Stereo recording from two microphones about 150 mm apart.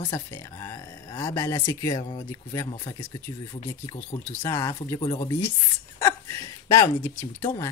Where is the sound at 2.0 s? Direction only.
30° left (ahead or behind).